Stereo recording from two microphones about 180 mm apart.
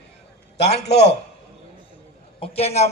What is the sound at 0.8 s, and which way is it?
Speech, 70° left (ahead or behind).